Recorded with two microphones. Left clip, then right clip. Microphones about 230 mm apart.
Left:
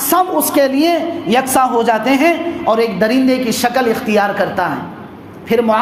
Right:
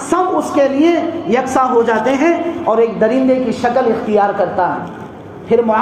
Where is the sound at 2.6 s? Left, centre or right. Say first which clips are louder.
Right 1 dB; left.